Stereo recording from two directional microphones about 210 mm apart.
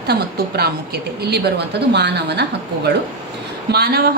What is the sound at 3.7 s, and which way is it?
Speech, 50° right (ahead or behind).